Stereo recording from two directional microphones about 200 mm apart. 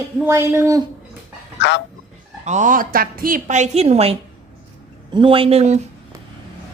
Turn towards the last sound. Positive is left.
turn(degrees=-35)  # may be behind; listen again after turning